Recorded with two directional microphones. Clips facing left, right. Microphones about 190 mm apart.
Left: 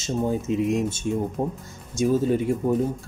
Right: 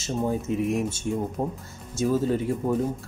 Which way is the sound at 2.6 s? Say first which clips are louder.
Left 2 dB; 5° right (ahead or behind).